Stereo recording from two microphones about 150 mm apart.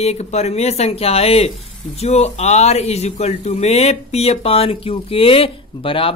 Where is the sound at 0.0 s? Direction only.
45° left (ahead or behind).